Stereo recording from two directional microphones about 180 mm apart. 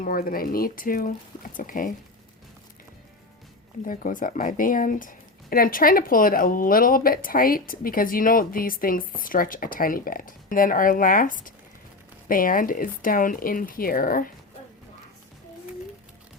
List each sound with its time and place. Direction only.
0.0 s speech: 50° left (ahead or behind)
3.8 s speech: 50° left (ahead or behind)